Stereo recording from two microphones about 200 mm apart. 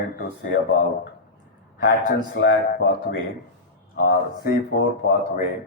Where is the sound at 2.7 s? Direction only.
55° left (ahead or behind).